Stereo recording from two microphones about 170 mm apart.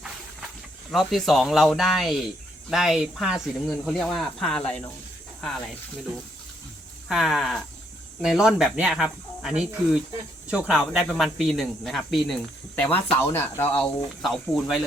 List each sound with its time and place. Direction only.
0.9 s speech: centre (ahead or behind)
7.1 s speech: centre (ahead or behind)
14.2 s speech: centre (ahead or behind)